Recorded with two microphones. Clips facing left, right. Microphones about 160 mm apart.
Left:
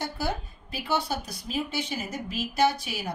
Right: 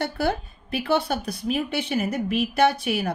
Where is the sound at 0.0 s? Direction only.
60° right (ahead or behind).